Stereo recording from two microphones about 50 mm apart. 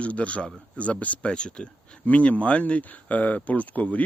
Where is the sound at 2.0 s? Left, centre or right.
Left.